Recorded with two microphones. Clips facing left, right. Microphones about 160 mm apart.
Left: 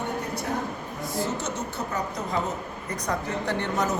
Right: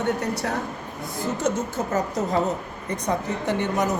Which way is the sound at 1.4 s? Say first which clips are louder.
Right 6 dB; 50° right (ahead or behind).